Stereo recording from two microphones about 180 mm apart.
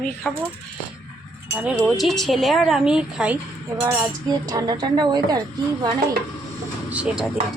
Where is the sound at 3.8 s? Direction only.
20° right (ahead or behind).